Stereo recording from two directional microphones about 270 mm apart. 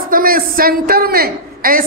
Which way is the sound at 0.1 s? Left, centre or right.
Right.